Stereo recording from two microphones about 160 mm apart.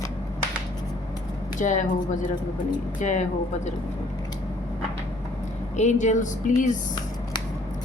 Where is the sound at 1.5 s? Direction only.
50° left (ahead or behind).